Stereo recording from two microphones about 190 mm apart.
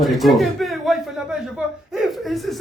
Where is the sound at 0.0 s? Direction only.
Centre (ahead or behind).